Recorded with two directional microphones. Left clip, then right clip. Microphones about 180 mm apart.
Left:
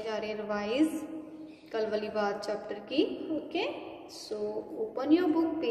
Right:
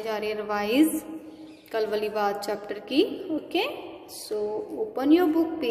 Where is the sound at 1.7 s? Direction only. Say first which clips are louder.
Right 5 dB; 35° right (ahead or behind).